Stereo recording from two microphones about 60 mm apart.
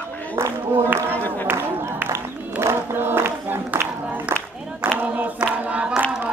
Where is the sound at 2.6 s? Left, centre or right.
Right.